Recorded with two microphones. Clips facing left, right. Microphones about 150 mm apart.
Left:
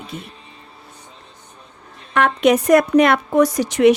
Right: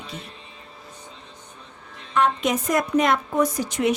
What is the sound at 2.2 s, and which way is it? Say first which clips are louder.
A woman's voice: left 6 dB; 70° left (ahead or behind).